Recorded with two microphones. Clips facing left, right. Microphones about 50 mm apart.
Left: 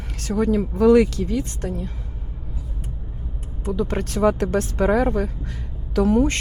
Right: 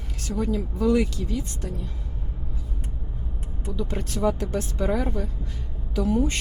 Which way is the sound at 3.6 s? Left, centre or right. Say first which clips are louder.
Left 7 dB; left.